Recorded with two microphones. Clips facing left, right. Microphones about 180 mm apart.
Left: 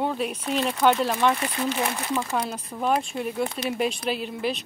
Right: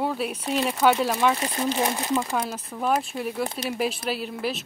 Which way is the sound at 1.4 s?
30° right (ahead or behind).